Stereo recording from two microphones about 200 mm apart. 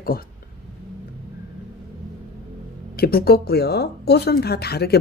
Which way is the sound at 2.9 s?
50° left (ahead or behind).